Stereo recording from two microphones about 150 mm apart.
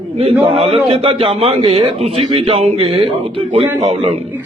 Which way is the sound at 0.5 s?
45° right (ahead or behind).